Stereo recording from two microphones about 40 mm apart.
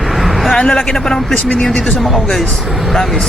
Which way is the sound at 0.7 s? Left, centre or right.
Centre.